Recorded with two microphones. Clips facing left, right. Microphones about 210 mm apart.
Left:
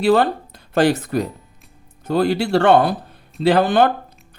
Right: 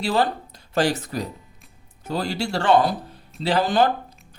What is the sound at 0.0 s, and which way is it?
Speech, 55° left (ahead or behind).